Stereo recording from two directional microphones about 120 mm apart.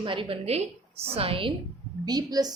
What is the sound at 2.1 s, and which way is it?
Speech, 35° right (ahead or behind).